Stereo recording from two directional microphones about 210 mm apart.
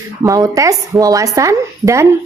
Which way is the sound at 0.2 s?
15° right (ahead or behind).